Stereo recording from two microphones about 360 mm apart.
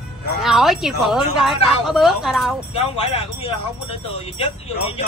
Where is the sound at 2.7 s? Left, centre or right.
Centre.